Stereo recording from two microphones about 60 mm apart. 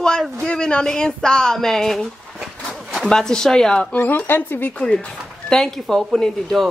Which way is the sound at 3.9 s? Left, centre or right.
Left.